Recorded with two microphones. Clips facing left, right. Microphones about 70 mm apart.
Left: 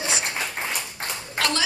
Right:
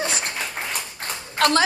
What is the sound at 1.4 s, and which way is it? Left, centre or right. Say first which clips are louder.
Speech: right 7 dB; right.